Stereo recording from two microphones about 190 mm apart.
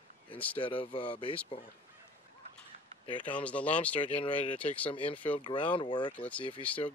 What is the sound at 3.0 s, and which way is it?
Speech, 25° left (ahead or behind).